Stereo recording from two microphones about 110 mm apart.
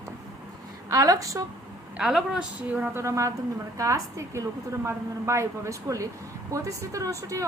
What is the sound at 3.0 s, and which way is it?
A woman's voice, 30° right (ahead or behind).